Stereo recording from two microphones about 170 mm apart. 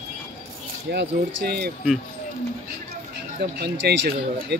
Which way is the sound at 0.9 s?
80° right.